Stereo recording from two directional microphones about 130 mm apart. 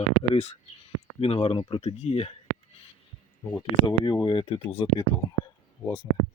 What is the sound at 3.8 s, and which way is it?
Speech, 35° left (ahead or behind).